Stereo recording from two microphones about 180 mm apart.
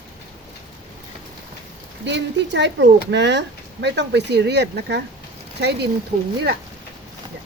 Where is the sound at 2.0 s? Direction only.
75° right (ahead or behind).